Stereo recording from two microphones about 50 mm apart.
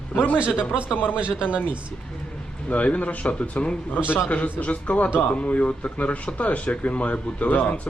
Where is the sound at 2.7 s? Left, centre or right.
Left.